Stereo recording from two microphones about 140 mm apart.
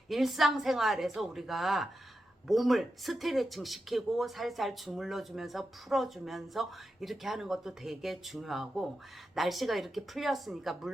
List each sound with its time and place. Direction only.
0.1 s speech: centre (ahead or behind)